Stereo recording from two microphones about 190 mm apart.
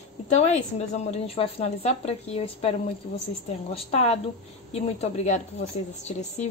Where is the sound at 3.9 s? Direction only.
35° left (ahead or behind).